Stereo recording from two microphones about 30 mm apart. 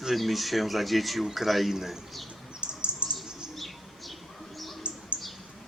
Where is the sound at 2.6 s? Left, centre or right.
Right.